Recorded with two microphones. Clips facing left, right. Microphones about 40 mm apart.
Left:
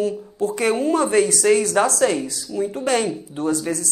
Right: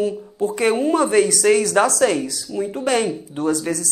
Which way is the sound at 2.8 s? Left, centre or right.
Right.